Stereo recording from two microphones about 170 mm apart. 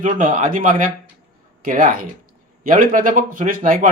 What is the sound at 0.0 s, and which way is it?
Speech, 50° right (ahead or behind).